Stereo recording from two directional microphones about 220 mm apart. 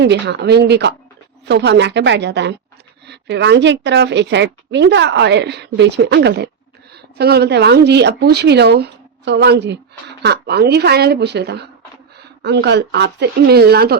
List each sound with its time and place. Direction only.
0.0 s a woman's voice: 50° right (ahead or behind)